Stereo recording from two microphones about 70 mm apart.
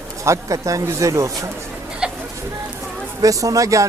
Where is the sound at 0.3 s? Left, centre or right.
Right.